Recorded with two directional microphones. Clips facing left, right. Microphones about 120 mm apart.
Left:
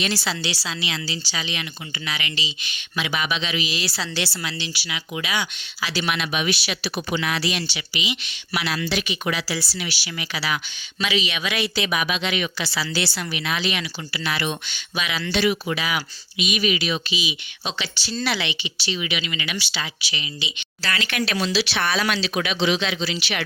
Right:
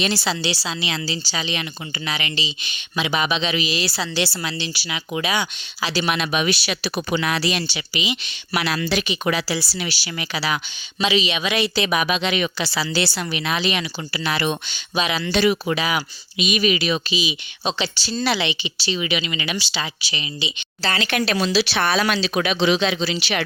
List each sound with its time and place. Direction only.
0.0 s speech: 25° right (ahead or behind)
3.5 s speech: 40° right (ahead or behind)
8.5 s speech: 45° right (ahead or behind); by 15.3 s 30° right (ahead or behind)
15.3 s speech: 40° right (ahead or behind)